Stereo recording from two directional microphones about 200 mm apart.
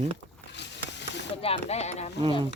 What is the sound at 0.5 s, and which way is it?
Hiss, 60° left (ahead or behind).